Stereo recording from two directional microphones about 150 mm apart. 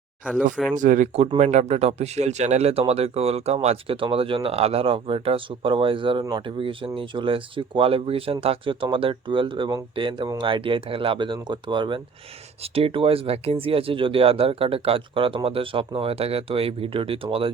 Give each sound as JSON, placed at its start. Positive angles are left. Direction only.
{"t": 0.8, "sound": "speech", "side_deg": -60}